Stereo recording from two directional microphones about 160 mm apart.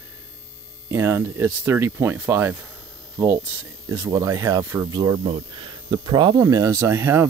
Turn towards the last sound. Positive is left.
turn(degrees=-15)  # may be behind; listen again after turning